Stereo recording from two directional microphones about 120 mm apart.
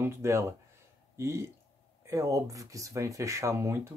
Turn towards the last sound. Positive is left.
turn(degrees=-25)  # may be behind; listen again after turning